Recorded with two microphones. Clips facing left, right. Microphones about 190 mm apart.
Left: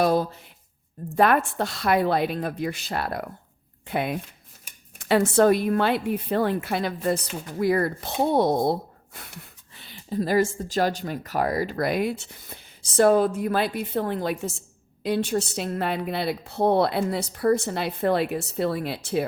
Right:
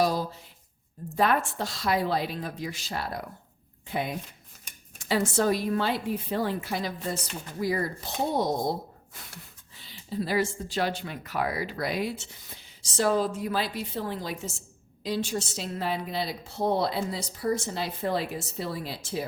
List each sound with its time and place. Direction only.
0.0 s a sound: 60° left (ahead or behind)
1.1 s a woman's voice: 60° left (ahead or behind)
9.7 s a woman's voice: 60° left (ahead or behind)